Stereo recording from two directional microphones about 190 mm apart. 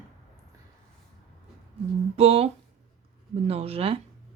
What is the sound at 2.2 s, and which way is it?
Speech, 30° right (ahead or behind).